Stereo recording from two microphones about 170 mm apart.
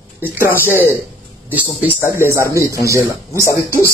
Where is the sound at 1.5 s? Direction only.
10° right (ahead or behind).